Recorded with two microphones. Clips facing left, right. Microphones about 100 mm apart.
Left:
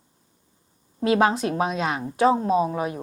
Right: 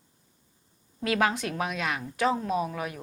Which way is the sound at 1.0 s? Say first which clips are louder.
Left 6 dB; 25° left (ahead or behind).